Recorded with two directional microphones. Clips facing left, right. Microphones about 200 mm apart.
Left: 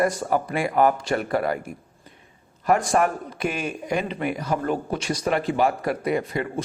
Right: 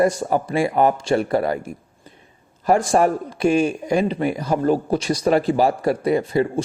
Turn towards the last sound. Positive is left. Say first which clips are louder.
# right 6 dB
turn(degrees=-30)  # may be behind; listen again after turning